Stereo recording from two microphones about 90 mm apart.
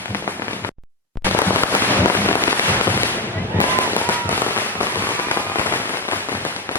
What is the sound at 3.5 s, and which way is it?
Fireworks, 25° left (ahead or behind).